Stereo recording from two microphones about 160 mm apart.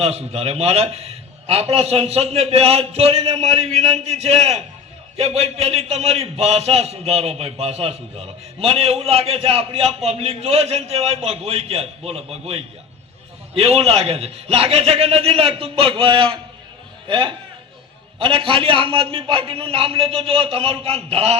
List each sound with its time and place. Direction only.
0.0 s a man's voice: 40° right (ahead or behind)